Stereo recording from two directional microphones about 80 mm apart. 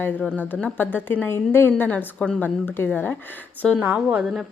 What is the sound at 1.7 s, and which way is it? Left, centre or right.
Speech, centre.